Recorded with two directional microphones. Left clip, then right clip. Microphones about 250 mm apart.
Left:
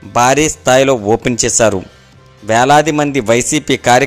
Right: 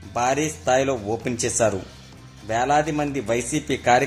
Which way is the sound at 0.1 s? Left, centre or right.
Left.